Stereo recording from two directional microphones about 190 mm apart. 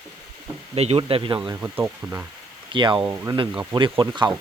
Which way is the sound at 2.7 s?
25° right (ahead or behind).